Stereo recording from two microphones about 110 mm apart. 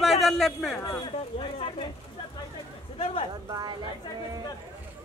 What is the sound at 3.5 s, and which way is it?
Speech, 40° right (ahead or behind).